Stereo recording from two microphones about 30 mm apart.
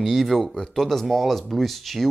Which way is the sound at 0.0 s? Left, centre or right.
Centre.